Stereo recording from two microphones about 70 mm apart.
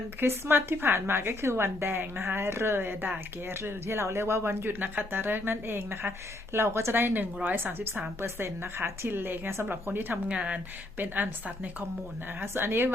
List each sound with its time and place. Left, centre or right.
0.2 s a woman's voice: right
10.2 s speech: centre
10.9 s a woman's voice: right